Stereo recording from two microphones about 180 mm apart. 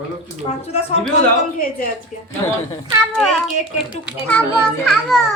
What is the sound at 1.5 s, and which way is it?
Speech, 50° left (ahead or behind).